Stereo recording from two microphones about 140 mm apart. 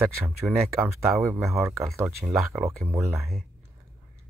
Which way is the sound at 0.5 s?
10° right (ahead or behind).